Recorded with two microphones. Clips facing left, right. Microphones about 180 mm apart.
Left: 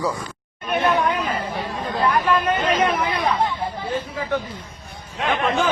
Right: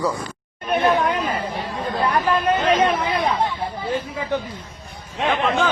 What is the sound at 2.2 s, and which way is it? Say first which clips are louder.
Hubbub: right 1 dB; 30° right (ahead or behind).